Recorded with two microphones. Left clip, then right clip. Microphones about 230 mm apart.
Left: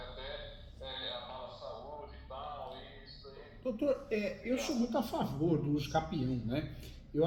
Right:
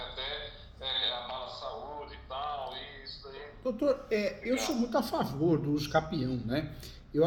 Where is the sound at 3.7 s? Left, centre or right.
Centre.